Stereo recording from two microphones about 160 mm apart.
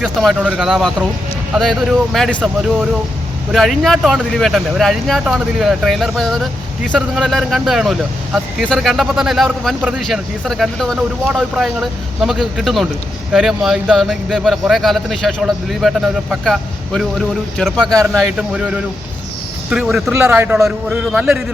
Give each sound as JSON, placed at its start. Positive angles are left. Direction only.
{"t": 0.0, "sound": "speech", "side_deg": -5}
{"t": 3.5, "sound": "a man's voice", "side_deg": 0}
{"t": 20.1, "sound": "a man's voice", "side_deg": -15}